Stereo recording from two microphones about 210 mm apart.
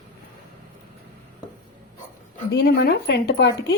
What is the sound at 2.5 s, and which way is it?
A woman's voice, 50° left (ahead or behind).